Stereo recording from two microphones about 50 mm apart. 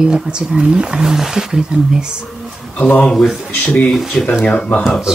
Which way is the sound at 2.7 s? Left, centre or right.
Left.